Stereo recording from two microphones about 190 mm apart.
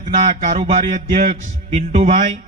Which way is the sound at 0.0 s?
40° right (ahead or behind).